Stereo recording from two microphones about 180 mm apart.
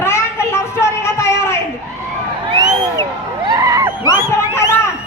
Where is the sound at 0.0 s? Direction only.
15° left (ahead or behind).